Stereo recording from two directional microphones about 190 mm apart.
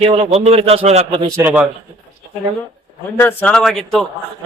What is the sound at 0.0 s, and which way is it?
A man's voice, 30° right (ahead or behind).